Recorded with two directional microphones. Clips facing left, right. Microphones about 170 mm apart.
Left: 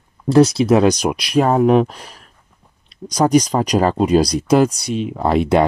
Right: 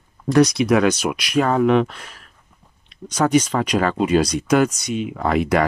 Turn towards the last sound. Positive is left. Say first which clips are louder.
# left 4 dB
turn(degrees=30)  # may be behind; listen again after turning